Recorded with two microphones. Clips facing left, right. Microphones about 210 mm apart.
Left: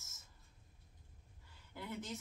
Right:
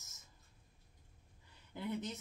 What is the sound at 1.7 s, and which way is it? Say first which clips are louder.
Speech: right 4 dB; 20° right (ahead or behind).